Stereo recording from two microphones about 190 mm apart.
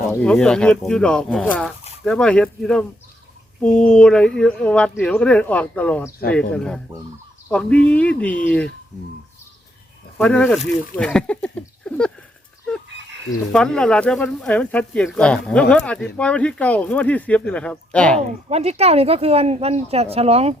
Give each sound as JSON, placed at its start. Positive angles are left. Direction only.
{"t": 0.1, "sound": "speech", "side_deg": 5}
{"t": 10.2, "sound": "speech", "side_deg": 5}
{"t": 13.5, "sound": "speech", "side_deg": 5}
{"t": 18.4, "sound": "speech", "side_deg": -35}